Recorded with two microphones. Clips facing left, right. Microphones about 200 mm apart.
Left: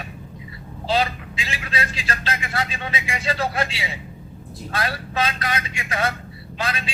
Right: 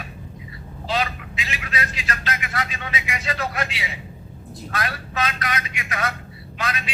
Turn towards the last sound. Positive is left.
turn(degrees=30)  # may be behind; listen again after turning